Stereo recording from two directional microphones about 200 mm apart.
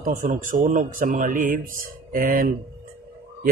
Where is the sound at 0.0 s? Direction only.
40° right (ahead or behind).